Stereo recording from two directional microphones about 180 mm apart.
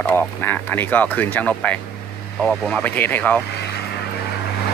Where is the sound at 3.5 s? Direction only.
65° left (ahead or behind).